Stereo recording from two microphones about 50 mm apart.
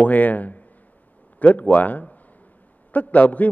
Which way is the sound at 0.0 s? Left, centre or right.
Left.